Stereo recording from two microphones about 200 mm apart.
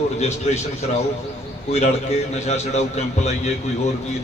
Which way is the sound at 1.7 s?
30° left (ahead or behind).